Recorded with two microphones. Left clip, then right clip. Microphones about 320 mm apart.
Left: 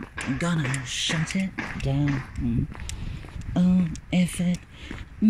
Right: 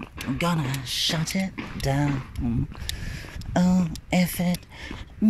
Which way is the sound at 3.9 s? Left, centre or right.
Centre.